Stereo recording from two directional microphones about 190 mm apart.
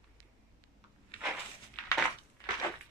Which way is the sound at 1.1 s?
25° left (ahead or behind).